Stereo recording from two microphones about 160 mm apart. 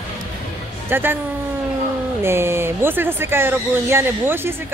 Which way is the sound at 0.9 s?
15° right (ahead or behind).